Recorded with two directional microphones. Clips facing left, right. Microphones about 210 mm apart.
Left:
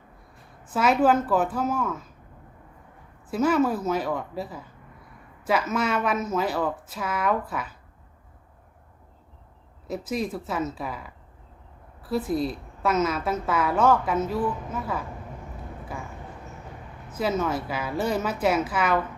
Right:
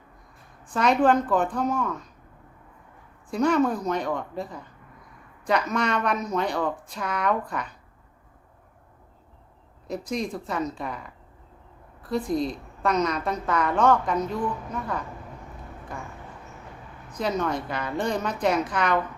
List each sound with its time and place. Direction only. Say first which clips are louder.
0.6 s a woman's voice: even; 5° left (ahead or behind)
3.2 s a woman's voice: even; 5° left (ahead or behind)
9.8 s a woman's voice: left 1 dB; 5° left (ahead or behind)
17.1 s a woman's voice: left 1 dB; 5° left (ahead or behind)